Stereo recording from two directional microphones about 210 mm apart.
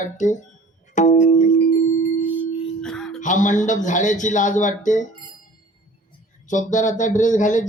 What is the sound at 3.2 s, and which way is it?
Speech, 35° left (ahead or behind).